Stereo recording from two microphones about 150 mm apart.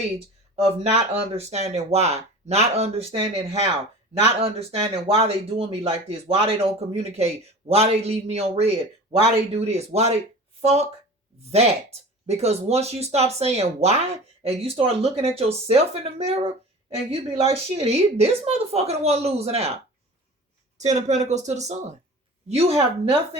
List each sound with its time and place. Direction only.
0.5 s speech: 40° right (ahead or behind)
12.2 s speech: 45° right (ahead or behind)